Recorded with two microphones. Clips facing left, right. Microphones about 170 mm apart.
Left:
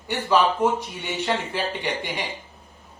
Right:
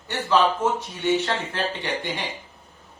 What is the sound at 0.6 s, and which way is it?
Speech, 15° left (ahead or behind).